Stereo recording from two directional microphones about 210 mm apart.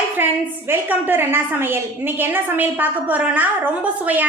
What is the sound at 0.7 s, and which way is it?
A woman's voice, 10° right (ahead or behind).